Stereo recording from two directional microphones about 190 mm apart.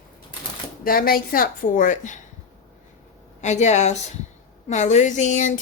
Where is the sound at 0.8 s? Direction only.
50° left (ahead or behind).